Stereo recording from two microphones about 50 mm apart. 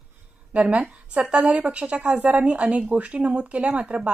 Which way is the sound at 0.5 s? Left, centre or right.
Right.